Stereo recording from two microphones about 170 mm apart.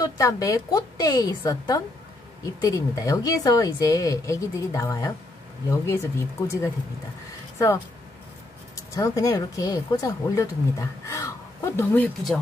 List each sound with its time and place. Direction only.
0.0 s speech: 20° left (ahead or behind)
8.9 s speech: 20° left (ahead or behind)